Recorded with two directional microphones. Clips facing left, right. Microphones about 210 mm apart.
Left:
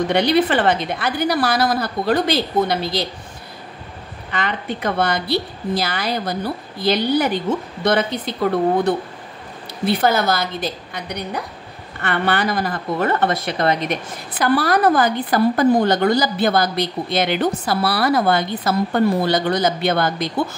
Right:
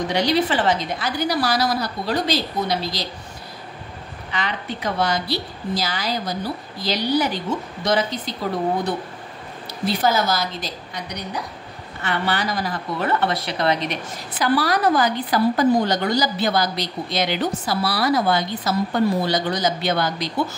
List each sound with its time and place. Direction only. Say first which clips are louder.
0.1 s a woman's voice: left 3 dB; 55° left (ahead or behind)
4.3 s a woman's voice: left 3 dB; 55° left (ahead or behind)
9.8 s a woman's voice: left 3 dB; 55° left (ahead or behind)